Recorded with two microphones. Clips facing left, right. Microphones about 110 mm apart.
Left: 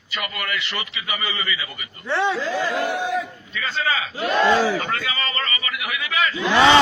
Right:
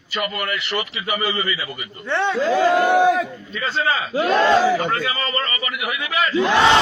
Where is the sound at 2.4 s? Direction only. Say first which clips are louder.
Right 7 dB; 60° right (ahead or behind).